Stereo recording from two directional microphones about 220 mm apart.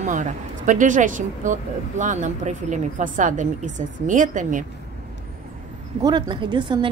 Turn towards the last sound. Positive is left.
turn(degrees=-20)  # may be behind; listen again after turning